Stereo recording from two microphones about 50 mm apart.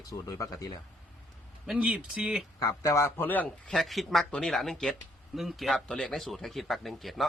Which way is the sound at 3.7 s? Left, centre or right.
Centre.